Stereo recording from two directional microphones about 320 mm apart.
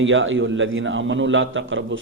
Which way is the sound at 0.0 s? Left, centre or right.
Right.